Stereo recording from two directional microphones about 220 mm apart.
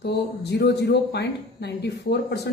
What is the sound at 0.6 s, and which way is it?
A woman's voice, 50° left (ahead or behind).